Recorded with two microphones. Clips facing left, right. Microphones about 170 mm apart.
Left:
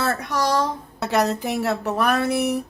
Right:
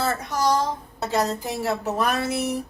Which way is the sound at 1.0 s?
70° left (ahead or behind).